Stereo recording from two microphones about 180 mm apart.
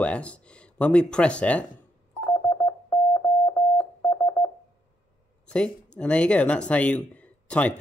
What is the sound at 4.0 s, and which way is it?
Telephone dialing, 15° left (ahead or behind).